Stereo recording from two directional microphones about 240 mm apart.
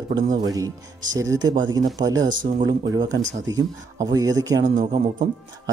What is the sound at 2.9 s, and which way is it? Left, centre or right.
Speech, centre.